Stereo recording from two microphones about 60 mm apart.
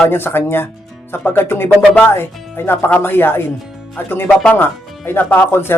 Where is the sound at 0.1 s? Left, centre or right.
Left.